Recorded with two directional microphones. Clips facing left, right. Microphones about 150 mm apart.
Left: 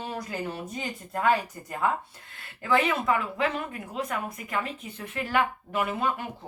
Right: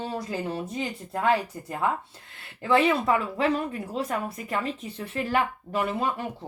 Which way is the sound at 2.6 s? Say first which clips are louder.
Right 3 dB; 30° right (ahead or behind).